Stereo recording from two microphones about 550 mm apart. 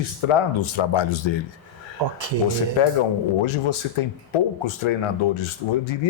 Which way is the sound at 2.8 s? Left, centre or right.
Left.